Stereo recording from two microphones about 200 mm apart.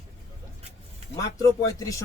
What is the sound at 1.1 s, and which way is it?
Speech, 15° left (ahead or behind).